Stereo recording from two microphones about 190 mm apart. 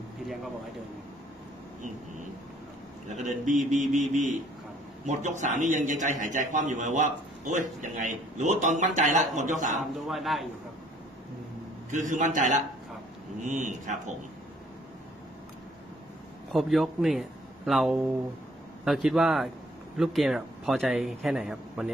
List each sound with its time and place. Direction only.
3.1 s a man's voice: 40° right (ahead or behind)
9.9 s a man's voice: centre (ahead or behind)
11.9 s a man's voice: 40° right (ahead or behind)
16.5 s a man's voice: centre (ahead or behind)